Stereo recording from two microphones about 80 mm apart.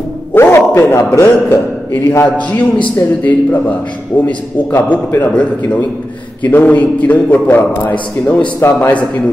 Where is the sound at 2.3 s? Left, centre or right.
Centre.